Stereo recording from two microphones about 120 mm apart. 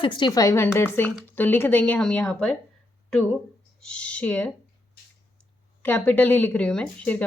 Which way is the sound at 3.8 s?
10° left (ahead or behind).